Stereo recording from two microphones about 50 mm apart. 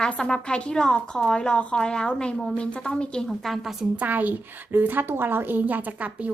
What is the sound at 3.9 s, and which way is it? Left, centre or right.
A woman's voice, right.